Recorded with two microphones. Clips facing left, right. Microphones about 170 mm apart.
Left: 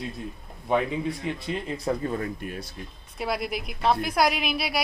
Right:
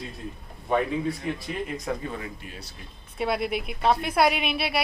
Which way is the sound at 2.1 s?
50° left (ahead or behind).